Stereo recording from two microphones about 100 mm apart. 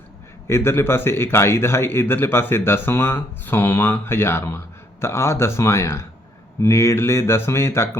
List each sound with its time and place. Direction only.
0.4 s a man's voice: 25° left (ahead or behind)